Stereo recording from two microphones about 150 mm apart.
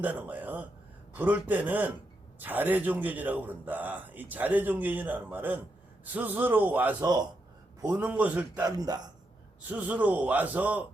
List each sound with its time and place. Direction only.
0.0 s a man's voice: 10° right (ahead or behind)
8.6 s a man's voice: 25° right (ahead or behind)
9.6 s speech: 10° right (ahead or behind)